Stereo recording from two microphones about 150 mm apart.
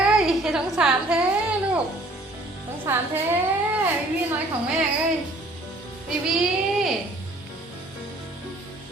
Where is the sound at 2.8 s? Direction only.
15° right (ahead or behind).